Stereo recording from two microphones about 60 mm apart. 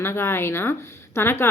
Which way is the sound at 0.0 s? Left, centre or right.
Left.